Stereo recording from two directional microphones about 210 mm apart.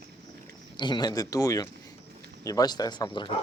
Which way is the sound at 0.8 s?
20° left (ahead or behind).